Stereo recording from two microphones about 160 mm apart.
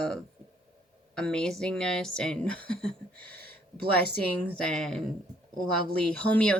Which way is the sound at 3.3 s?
75° right (ahead or behind).